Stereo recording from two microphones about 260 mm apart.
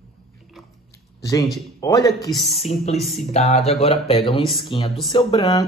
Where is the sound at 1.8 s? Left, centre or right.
Centre.